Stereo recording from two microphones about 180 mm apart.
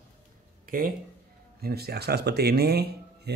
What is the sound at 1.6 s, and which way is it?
Speech, 60° right (ahead or behind).